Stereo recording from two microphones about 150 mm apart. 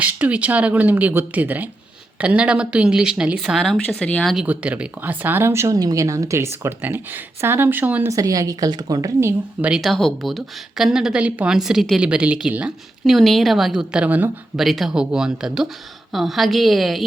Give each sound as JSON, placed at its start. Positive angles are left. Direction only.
{"t": 0.0, "sound": "speech", "side_deg": -10}
{"t": 4.4, "sound": "speech", "side_deg": -10}
{"t": 8.1, "sound": "a woman's voice", "side_deg": -25}
{"t": 9.6, "sound": "speech", "side_deg": -5}